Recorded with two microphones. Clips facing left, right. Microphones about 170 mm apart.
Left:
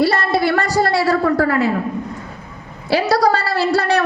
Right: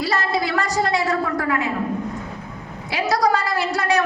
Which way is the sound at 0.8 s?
70° left (ahead or behind).